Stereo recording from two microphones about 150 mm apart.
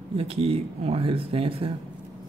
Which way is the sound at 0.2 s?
40° right (ahead or behind).